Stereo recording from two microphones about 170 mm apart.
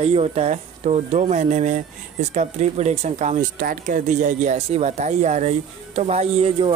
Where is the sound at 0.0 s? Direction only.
35° right (ahead or behind).